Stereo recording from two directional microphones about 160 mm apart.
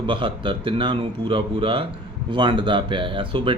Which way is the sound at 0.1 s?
30° right (ahead or behind).